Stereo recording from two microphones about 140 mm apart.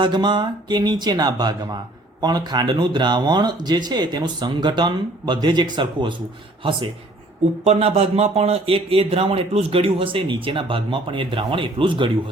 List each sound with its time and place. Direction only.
0.0 s speech: 35° right (ahead or behind)
7.6 s speech: 50° right (ahead or behind)